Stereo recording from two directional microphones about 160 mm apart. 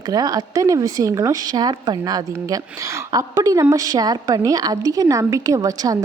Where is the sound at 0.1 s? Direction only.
25° right (ahead or behind).